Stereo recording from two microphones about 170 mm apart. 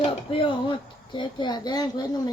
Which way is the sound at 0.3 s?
30° left (ahead or behind).